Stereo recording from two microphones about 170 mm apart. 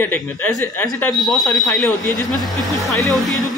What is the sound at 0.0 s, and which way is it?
Speech, 10° left (ahead or behind).